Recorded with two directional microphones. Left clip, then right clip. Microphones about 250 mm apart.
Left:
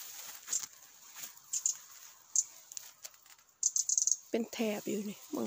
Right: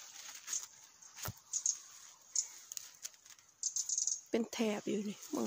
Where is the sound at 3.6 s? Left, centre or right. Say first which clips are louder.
Left 6 dB; left.